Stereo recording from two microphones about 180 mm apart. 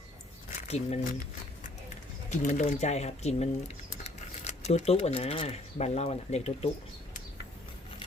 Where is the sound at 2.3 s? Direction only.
45° left (ahead or behind).